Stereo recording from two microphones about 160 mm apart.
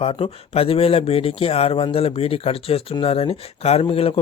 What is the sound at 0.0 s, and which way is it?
Speech, 35° left (ahead or behind).